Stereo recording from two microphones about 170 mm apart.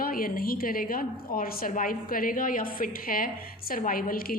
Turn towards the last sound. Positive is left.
turn(degrees=55)  # may be behind; listen again after turning